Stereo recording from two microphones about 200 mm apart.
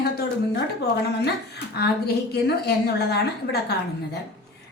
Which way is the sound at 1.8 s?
55° left (ahead or behind).